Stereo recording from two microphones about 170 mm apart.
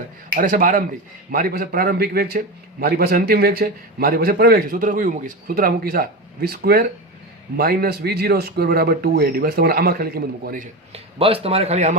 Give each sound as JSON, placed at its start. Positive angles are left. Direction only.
{"t": 0.3, "sound": "a man's voice", "side_deg": -55}
{"t": 10.9, "sound": "a man's voice", "side_deg": -35}